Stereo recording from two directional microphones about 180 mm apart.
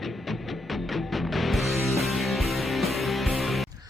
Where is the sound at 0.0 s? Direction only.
Centre (ahead or behind).